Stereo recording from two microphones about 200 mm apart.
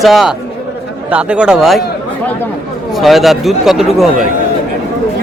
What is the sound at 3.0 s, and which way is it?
Speech, centre (ahead or behind).